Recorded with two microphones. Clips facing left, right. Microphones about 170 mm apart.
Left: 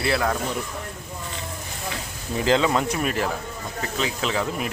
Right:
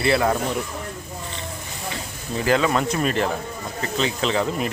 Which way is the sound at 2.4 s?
20° left (ahead or behind).